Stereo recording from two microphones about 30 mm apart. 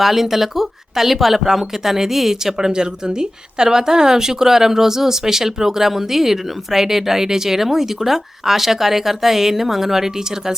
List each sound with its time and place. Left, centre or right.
0.0 s speech: centre